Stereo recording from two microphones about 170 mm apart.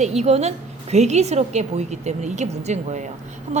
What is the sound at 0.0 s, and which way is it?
A woman's voice, 40° right (ahead or behind).